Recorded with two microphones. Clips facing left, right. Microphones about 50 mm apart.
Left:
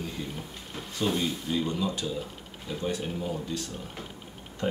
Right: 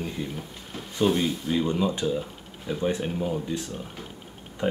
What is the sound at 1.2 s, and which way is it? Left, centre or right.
Speech, right.